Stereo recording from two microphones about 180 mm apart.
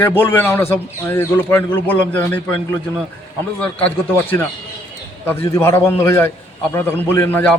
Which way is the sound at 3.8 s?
10° left (ahead or behind).